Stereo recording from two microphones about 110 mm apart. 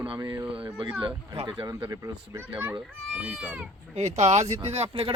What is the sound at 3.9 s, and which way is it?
Speech, 90° right.